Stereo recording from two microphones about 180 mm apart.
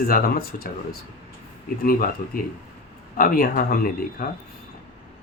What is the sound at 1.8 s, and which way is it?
Speech, 55° left (ahead or behind).